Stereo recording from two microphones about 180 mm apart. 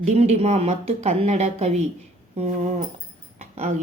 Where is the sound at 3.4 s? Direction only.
40° right (ahead or behind).